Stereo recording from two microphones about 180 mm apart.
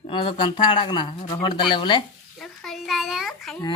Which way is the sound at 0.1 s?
25° left (ahead or behind).